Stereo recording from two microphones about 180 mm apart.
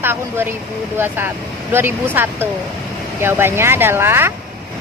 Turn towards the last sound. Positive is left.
turn(degrees=-15)  # may be behind; listen again after turning